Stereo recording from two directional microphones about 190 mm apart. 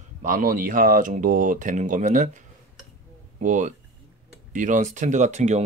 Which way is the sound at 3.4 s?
40° right (ahead or behind).